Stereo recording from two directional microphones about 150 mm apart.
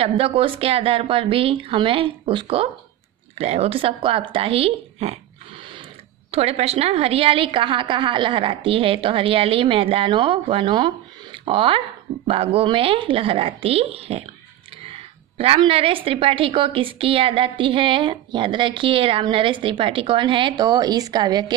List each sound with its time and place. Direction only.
0.0 s a woman's voice: 40° right (ahead or behind)
6.3 s a woman's voice: 45° right (ahead or behind); by 21.5 s 30° right (ahead or behind)